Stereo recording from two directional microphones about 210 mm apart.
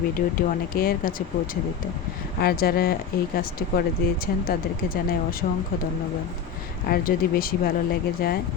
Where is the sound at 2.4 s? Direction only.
45° left (ahead or behind).